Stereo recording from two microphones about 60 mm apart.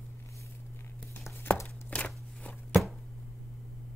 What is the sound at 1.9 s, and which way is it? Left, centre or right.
Crunch, left.